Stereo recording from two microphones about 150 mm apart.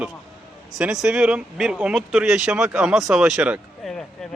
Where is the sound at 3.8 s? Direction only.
Centre (ahead or behind).